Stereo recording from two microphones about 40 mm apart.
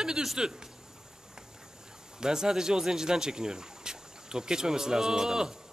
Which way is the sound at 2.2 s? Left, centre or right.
Centre.